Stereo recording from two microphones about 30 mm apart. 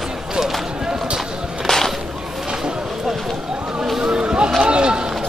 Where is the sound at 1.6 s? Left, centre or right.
Centre.